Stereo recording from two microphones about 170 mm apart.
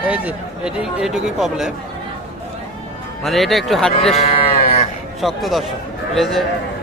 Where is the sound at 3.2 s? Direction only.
Centre (ahead or behind).